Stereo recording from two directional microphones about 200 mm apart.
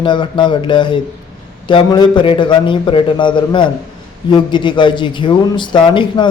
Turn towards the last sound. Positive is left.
turn(degrees=25)  # may be behind; listen again after turning